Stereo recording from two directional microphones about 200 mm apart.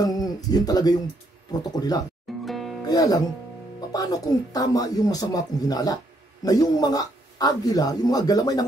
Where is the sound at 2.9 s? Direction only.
20° left (ahead or behind).